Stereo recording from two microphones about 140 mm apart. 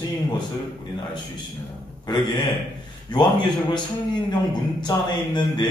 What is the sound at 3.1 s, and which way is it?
Speech, 30° left (ahead or behind).